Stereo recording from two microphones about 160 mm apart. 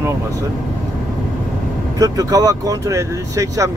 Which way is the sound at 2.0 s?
20° right (ahead or behind).